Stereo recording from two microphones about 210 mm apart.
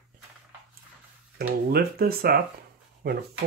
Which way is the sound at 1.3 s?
45° right (ahead or behind).